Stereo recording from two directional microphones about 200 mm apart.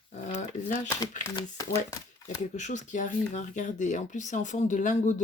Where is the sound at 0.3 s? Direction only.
40° left (ahead or behind).